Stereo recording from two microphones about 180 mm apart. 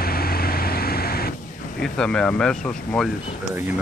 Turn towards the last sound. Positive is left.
turn(degrees=5)  # may be behind; listen again after turning